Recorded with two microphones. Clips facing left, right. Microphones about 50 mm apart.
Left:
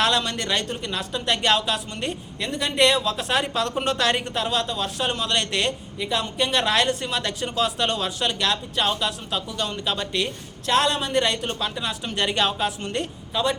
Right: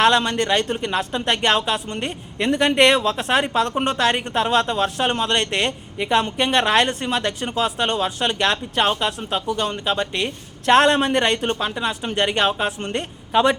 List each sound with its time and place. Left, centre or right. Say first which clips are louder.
0.0 s speech: right 6 dB; right
2.5 s speech: right 5 dB; right
11.5 s speech: right 4 dB; right